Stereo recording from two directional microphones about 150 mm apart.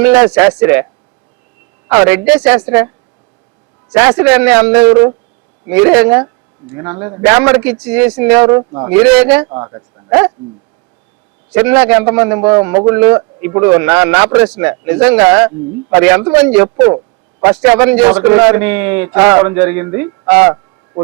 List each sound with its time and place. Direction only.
0.0 s a man's voice: 10° right (ahead or behind)
1.9 s a man's voice: 15° right (ahead or behind)
3.9 s a man's voice: 15° right (ahead or behind)
7.2 s a man's voice: 10° right (ahead or behind)
9.5 s a man's voice: 25° right (ahead or behind)
10.1 s speech: 15° right (ahead or behind)
11.5 s a man's voice: 10° right (ahead or behind)